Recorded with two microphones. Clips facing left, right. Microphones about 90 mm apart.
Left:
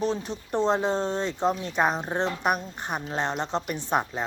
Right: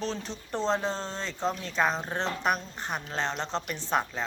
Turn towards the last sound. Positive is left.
turn(degrees=15)  # may be behind; listen again after turning